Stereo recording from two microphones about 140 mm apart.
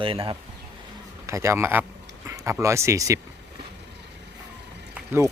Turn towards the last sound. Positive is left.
turn(degrees=-15)  # may be behind; listen again after turning